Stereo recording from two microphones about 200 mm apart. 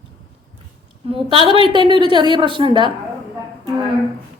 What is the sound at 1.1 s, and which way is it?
A woman's voice, 25° right (ahead or behind).